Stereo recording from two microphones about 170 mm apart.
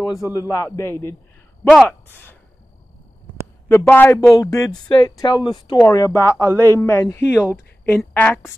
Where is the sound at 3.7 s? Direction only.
10° left (ahead or behind).